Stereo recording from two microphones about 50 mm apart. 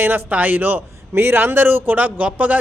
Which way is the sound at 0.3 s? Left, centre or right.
Right.